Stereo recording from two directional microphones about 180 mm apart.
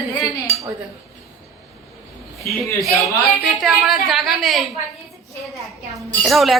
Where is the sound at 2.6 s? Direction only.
Centre (ahead or behind).